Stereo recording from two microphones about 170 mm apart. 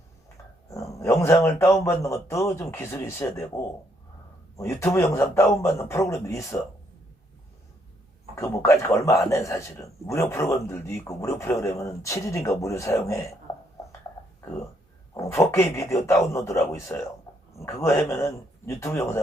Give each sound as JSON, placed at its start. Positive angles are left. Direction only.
{"t": 0.7, "sound": "a man's voice", "side_deg": 20}
{"t": 8.4, "sound": "a man's voice", "side_deg": 15}
{"t": 15.1, "sound": "a man's voice", "side_deg": 15}
{"t": 18.1, "sound": "a man's voice", "side_deg": 15}